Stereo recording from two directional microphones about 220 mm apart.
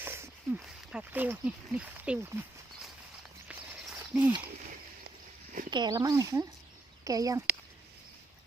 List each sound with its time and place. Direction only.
0.0 s speech: 10° right (ahead or behind)
3.5 s a sound: 5° right (ahead or behind)
5.7 s speech: 20° right (ahead or behind)